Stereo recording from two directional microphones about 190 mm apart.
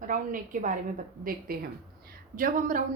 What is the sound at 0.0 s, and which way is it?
A woman's voice, 45° right (ahead or behind).